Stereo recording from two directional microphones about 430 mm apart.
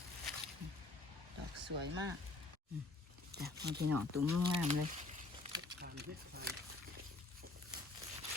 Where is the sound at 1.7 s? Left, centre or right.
Right.